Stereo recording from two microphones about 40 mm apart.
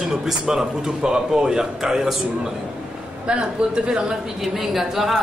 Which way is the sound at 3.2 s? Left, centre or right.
Right.